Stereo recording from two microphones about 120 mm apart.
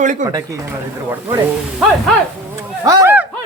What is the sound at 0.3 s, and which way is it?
Speech, 30° right (ahead or behind).